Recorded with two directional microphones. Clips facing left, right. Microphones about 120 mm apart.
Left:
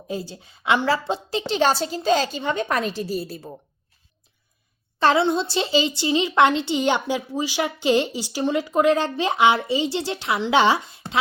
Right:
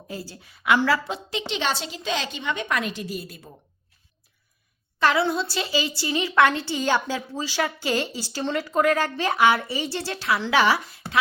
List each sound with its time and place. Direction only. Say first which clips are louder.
0.1 s a woman's voice: left 6 dB; 20° left (ahead or behind)
4.9 s a woman's voice: left 3 dB; 25° left (ahead or behind)